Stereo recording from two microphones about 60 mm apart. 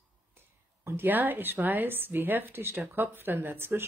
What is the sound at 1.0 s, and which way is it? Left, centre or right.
Speech, right.